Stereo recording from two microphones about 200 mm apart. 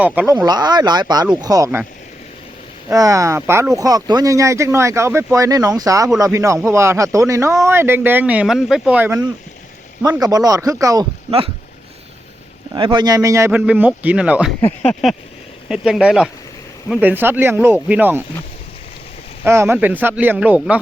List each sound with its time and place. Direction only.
0.0 s speech: 10° right (ahead or behind)
0.4 s speech: 20° right (ahead or behind)
2.9 s speech: 15° right (ahead or behind)
11.3 s speech: 25° right (ahead or behind)
12.7 s speech: 25° right (ahead or behind); by 18.2 s 10° right (ahead or behind)
19.5 s speech: 10° right (ahead or behind)